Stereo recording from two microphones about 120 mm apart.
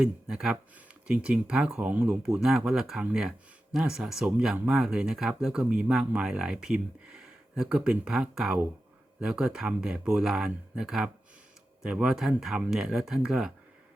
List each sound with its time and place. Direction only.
0.0 s speech: 5° right (ahead or behind)